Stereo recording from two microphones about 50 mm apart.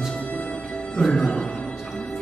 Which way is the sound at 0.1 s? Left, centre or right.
Left.